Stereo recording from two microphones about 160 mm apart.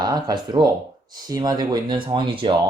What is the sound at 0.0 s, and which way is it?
Speech, 25° right (ahead or behind).